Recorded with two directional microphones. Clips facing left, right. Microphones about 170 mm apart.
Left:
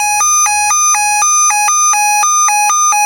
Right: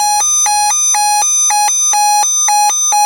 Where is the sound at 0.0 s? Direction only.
30° right (ahead or behind).